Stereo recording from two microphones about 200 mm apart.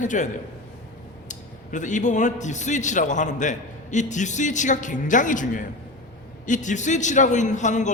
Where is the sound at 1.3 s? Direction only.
40° left (ahead or behind).